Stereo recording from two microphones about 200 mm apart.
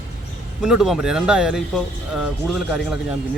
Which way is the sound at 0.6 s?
5° right (ahead or behind).